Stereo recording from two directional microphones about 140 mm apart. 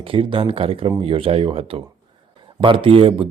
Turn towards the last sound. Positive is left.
turn(degrees=-40)  # may be behind; listen again after turning